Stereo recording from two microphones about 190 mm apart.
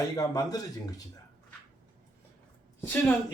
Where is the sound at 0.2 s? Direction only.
20° left (ahead or behind).